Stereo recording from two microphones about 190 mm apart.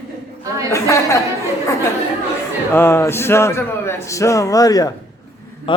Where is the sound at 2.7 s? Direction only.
15° left (ahead or behind).